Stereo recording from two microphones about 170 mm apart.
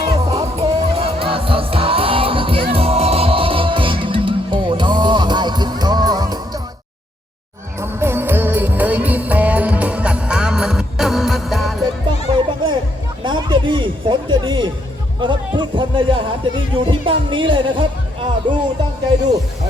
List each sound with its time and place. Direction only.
0.0 s music: 30° right (ahead or behind)
7.8 s music: 15° right (ahead or behind)
12.3 s music: 30° right (ahead or behind)
13.2 s a sound: 25° right (ahead or behind)
15.2 s music: 30° right (ahead or behind)